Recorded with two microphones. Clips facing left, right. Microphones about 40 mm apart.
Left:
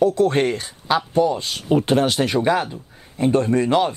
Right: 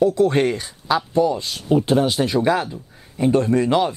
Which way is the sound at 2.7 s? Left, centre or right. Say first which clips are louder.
Even; centre.